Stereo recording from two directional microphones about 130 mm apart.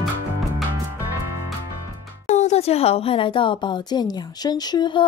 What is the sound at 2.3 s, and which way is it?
Speech, 60° left (ahead or behind).